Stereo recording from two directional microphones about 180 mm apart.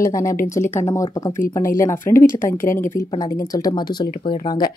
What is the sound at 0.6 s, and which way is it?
Speech, 15° left (ahead or behind).